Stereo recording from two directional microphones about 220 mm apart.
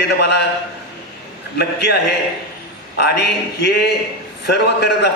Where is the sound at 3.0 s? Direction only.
45° left (ahead or behind).